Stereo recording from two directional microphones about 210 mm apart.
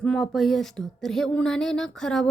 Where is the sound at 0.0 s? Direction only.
Centre (ahead or behind).